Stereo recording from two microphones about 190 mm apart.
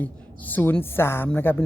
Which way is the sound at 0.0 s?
10° left (ahead or behind).